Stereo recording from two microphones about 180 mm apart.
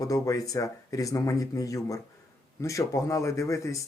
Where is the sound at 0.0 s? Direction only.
20° left (ahead or behind).